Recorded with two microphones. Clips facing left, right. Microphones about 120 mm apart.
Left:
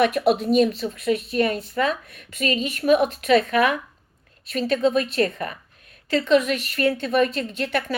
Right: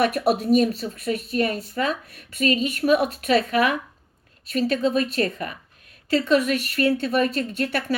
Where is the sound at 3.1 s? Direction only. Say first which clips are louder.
Left 2 dB; 40° right (ahead or behind).